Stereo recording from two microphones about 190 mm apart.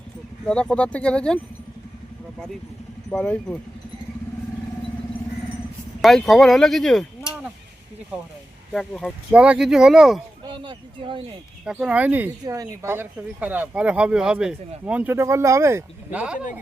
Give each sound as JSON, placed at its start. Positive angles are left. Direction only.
{"t": 0.4, "sound": "speech", "side_deg": 5}
{"t": 3.1, "sound": "speech", "side_deg": 5}
{"t": 6.0, "sound": "speech", "side_deg": 0}
{"t": 10.4, "sound": "speech", "side_deg": -25}
{"t": 11.6, "sound": "speech", "side_deg": -5}